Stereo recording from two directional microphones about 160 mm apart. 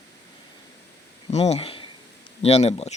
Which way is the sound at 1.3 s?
40° left (ahead or behind).